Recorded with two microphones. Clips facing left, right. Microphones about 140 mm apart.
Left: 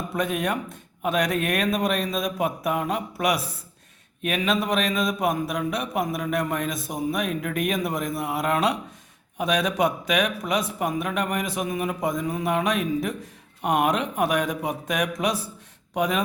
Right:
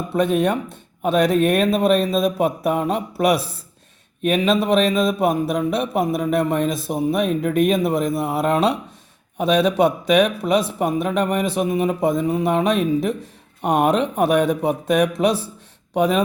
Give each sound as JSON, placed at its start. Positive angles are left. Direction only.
{"t": 0.1, "sound": "a man's voice", "side_deg": -30}